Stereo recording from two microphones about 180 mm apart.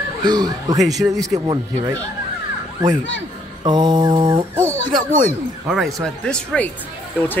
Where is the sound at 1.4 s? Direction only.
25° right (ahead or behind).